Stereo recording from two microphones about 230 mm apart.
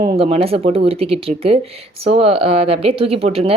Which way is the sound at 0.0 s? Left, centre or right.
Right.